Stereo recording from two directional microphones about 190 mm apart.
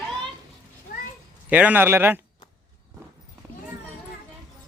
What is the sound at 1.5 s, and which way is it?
Speech, 10° right (ahead or behind).